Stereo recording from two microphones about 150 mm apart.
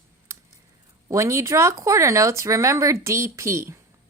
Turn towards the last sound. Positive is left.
turn(degrees=-20)  # may be behind; listen again after turning